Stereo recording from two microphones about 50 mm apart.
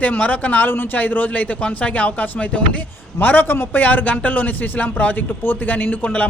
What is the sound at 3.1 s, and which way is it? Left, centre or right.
Speech, left.